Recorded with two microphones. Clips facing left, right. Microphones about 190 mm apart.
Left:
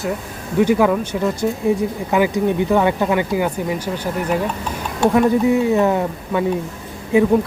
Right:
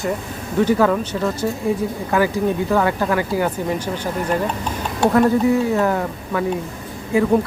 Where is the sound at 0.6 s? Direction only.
10° left (ahead or behind).